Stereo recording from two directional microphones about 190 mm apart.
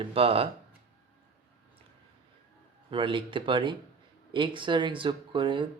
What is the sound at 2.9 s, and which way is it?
Speech, 25° right (ahead or behind).